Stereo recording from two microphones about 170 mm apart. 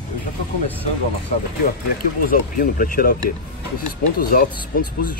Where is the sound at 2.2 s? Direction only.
55° left (ahead or behind).